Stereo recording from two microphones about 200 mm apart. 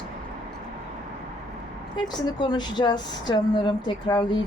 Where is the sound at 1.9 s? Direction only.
20° left (ahead or behind).